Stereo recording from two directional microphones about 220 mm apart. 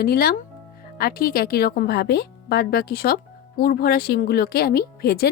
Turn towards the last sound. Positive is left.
turn(degrees=45)  # may be behind; listen again after turning